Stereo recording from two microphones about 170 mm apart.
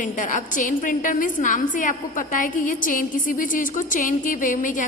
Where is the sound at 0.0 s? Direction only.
50° left (ahead or behind).